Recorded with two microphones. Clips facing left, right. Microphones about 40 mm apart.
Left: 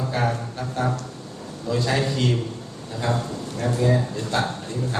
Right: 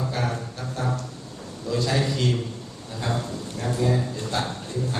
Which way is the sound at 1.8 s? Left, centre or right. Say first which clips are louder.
Left 1 dB; centre.